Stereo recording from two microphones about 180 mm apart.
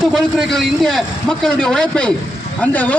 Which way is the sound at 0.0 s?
Centre (ahead or behind).